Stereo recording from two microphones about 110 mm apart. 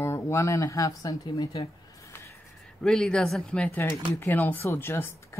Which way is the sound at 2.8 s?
5° left (ahead or behind).